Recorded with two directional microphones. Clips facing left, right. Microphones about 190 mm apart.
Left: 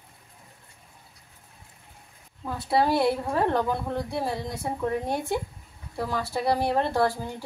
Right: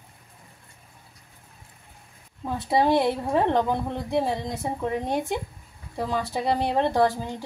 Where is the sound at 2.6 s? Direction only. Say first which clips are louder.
Right 2 dB; 20° right (ahead or behind).